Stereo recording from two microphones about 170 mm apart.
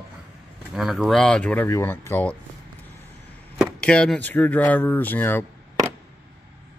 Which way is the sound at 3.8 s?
5° left (ahead or behind).